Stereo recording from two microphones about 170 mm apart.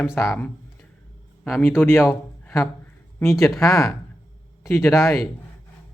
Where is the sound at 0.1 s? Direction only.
Centre (ahead or behind).